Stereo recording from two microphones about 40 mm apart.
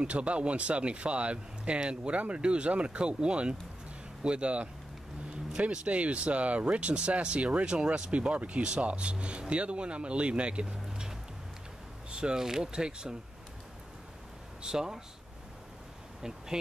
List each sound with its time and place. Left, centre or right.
0.0 s speech: right
5.7 s speech: right
8.1 s speech: right
12.1 s speech: right
14.6 s speech: centre
16.2 s speech: centre